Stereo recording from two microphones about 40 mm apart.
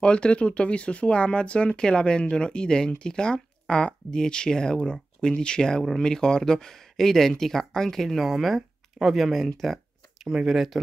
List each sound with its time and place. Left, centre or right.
0.0 s speech: left; by 9.5 s centre
9.6 s a sound: centre
10.4 s speech: centre